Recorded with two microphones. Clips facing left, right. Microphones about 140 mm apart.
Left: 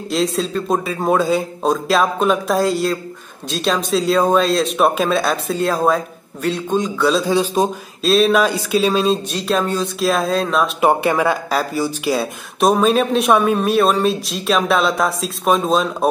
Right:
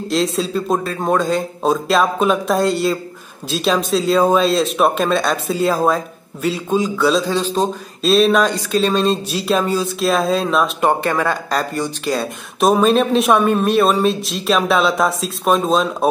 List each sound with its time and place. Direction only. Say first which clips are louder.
0.1 s speech: even; centre (ahead or behind)
7.2 s speech: left 2 dB; 10° left (ahead or behind)
8.0 s speech: right 1 dB; centre (ahead or behind)